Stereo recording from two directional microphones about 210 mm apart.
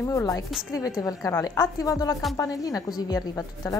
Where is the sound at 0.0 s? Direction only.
15° left (ahead or behind).